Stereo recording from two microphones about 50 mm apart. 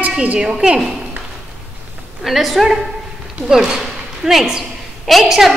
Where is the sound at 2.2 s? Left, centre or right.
Centre.